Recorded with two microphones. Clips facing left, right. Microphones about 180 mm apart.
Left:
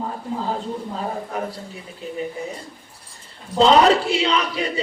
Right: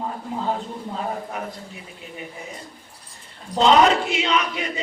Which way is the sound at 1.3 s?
35° left (ahead or behind).